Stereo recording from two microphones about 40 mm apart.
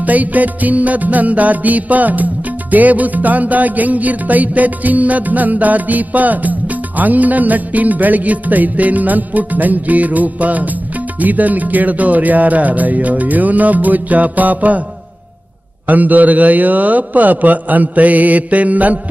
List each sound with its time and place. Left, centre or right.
0.0 s music: right
15.9 s music: right